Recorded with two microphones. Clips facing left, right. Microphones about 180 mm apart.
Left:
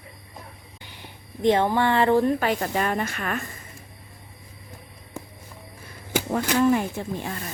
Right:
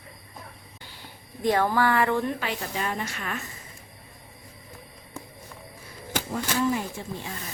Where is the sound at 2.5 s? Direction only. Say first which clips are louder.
Left 6 dB; 55° left (ahead or behind).